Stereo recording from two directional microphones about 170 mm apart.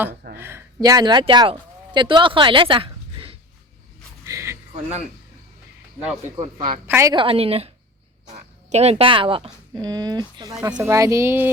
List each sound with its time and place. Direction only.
0.3 s speech: 15° right (ahead or behind); by 3.3 s 30° right (ahead or behind)
4.2 s a sound: 15° right (ahead or behind)
4.7 s speech: 40° right (ahead or behind)
6.8 s speech: 15° right (ahead or behind)
7.1 s speech: 30° right (ahead or behind)
8.7 s speech: 40° right (ahead or behind); by 11.5 s 15° right (ahead or behind)